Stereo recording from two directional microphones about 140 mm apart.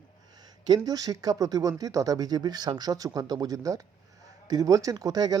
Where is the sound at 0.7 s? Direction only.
25° right (ahead or behind).